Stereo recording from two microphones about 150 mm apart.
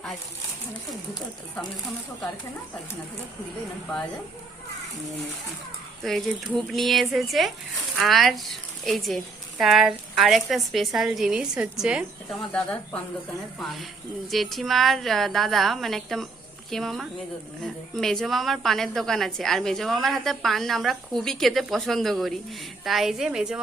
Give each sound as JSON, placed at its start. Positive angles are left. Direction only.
{"t": 6.0, "sound": "a woman's voice", "side_deg": 0}
{"t": 12.4, "sound": "speech", "side_deg": 5}
{"t": 14.3, "sound": "a woman's voice", "side_deg": 0}